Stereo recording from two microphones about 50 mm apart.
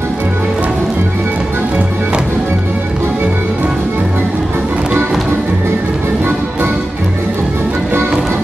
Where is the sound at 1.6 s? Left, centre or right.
Right.